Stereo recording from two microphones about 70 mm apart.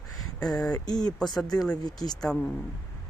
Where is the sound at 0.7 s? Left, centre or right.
Left.